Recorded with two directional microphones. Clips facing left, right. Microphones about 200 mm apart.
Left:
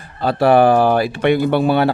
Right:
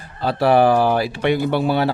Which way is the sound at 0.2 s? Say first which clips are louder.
Left 3 dB; 55° left (ahead or behind).